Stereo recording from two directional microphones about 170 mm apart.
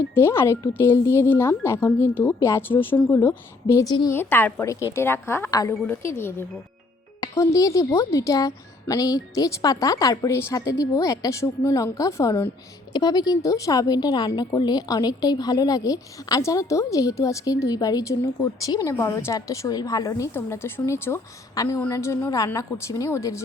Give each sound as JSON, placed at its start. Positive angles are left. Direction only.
{"t": 0.1, "sound": "speech", "side_deg": 15}